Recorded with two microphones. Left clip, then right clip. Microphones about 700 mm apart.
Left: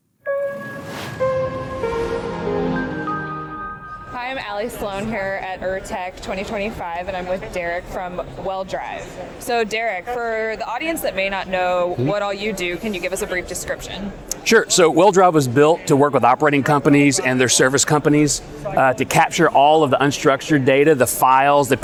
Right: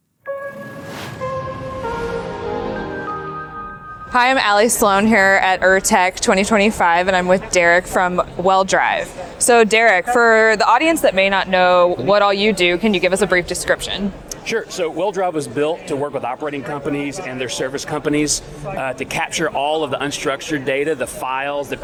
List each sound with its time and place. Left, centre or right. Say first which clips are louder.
1.2 s music: left 5 dB; centre
4.1 s a woman's voice: right 13 dB; right
14.4 s speech: left 8 dB; left